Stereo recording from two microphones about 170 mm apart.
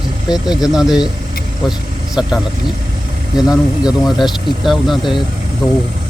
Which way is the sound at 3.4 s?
5° right (ahead or behind).